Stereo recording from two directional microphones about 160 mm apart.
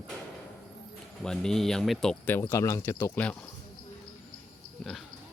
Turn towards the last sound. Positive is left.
turn(degrees=0)  # may be behind; listen again after turning